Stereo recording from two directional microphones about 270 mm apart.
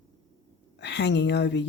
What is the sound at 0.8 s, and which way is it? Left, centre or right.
Speech, left.